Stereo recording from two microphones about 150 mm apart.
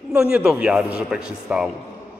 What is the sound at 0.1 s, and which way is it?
A man's voice, 10° right (ahead or behind).